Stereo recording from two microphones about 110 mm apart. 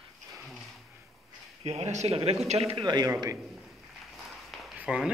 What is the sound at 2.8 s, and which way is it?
Speech, 40° right (ahead or behind).